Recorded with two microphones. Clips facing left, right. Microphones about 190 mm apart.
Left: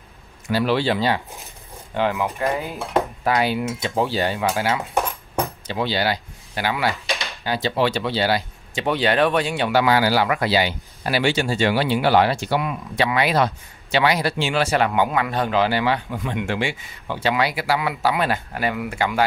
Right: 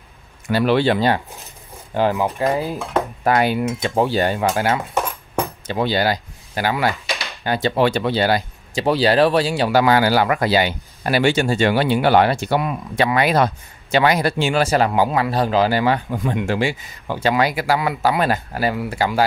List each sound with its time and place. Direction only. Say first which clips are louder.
0.5 s speech: right 4 dB; 55° right (ahead or behind)
2.0 s speech: right 3 dB; 35° right (ahead or behind)
3.3 s speech: right 7 dB; 50° right (ahead or behind)